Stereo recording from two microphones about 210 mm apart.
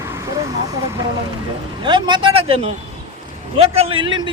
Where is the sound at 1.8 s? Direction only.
20° right (ahead or behind).